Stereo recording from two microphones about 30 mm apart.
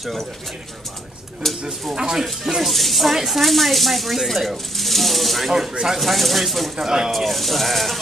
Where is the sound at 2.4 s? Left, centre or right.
Centre.